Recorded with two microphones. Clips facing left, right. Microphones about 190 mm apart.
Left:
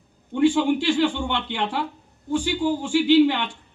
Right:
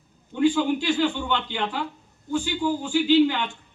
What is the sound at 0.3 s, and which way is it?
A man's voice, 85° left.